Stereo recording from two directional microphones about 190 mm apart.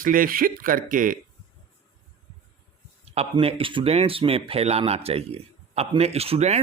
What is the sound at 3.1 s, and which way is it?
Speech, 30° right (ahead or behind).